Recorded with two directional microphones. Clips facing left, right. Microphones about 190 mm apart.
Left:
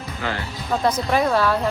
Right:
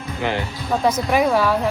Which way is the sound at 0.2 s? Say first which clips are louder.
Right 5 dB; 20° right (ahead or behind).